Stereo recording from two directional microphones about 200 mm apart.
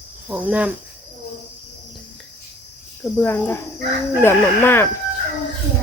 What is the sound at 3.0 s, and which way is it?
Speech, 10° left (ahead or behind).